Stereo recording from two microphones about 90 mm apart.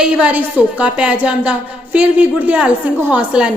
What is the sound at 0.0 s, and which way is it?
A woman's voice, 15° right (ahead or behind).